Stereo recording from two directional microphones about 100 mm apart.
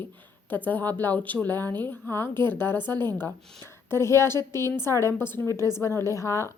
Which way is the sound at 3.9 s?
30° left (ahead or behind).